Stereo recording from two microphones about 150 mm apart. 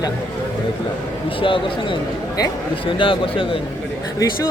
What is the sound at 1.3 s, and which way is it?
A man's voice, 35° left (ahead or behind).